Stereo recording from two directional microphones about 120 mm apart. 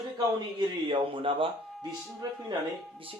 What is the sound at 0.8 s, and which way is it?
Speech, 45° right (ahead or behind).